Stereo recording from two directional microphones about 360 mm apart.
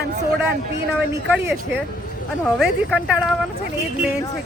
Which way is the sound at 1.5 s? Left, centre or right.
Right.